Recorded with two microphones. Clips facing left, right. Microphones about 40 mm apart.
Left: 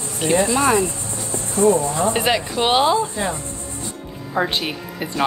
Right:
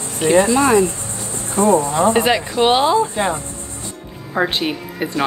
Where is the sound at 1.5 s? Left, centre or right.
Right.